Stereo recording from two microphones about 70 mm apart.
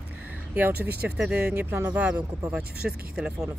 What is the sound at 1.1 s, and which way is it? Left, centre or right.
Speech, centre.